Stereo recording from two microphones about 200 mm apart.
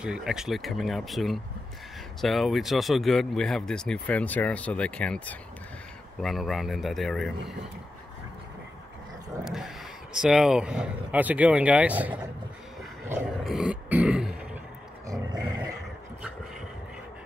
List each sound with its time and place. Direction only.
0.0 s speech: 5° right (ahead or behind)
9.4 s speech: centre (ahead or behind)
13.1 s throat clearing: centre (ahead or behind)
15.0 s dog: 20° right (ahead or behind)